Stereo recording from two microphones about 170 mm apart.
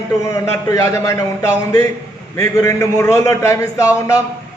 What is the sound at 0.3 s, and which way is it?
A man's voice, 15° left (ahead or behind).